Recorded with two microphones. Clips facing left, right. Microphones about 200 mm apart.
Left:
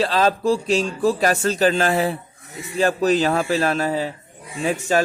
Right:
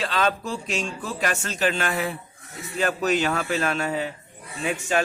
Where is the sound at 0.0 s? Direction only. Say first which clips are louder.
Left 6 dB; 35° left (ahead or behind).